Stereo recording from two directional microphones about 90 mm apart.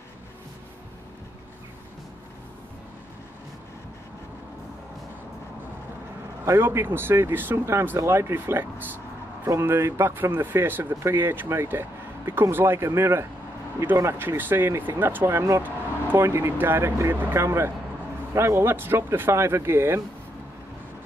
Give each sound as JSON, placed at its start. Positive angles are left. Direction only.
{"t": 6.4, "sound": "speech", "side_deg": -30}